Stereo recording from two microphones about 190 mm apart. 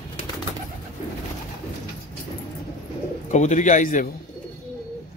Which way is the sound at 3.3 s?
40° left (ahead or behind).